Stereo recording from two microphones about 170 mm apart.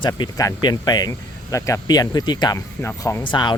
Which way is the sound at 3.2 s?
25° left (ahead or behind).